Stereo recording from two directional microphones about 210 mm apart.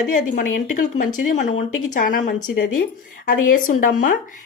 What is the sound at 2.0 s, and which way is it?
A woman's voice, 45° left (ahead or behind).